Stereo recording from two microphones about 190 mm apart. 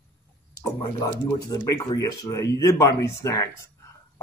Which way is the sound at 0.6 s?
20° left (ahead or behind).